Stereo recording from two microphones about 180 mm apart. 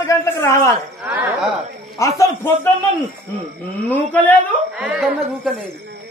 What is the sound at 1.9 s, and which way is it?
Speech, 15° left (ahead or behind).